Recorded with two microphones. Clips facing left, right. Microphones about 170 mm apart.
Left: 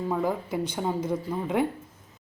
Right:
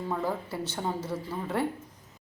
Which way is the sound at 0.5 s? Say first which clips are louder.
Left 6 dB; 15° left (ahead or behind).